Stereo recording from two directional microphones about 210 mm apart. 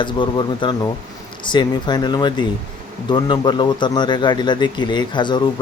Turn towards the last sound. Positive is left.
turn(degrees=20)  # may be behind; listen again after turning